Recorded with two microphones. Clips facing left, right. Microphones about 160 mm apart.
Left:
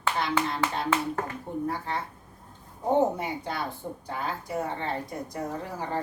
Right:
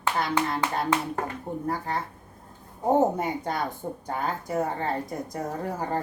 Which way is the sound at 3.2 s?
45° right (ahead or behind).